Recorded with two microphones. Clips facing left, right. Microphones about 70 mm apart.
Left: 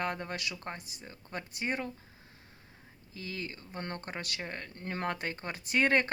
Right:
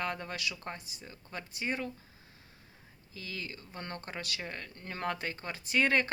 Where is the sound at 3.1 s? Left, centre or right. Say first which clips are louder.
Left 2 dB; left.